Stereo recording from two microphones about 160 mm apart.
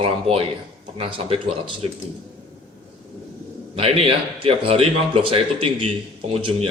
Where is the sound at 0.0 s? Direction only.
40° right (ahead or behind).